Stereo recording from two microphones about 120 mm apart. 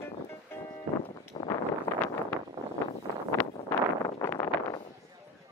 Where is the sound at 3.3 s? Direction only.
20° left (ahead or behind).